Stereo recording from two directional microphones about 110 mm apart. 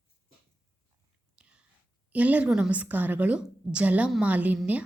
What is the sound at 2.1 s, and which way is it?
A woman's voice, 15° right (ahead or behind).